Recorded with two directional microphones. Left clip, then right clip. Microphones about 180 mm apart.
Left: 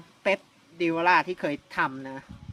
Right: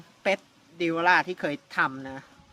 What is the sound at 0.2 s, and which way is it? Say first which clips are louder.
Speech: left 1 dB; 15° right (ahead or behind).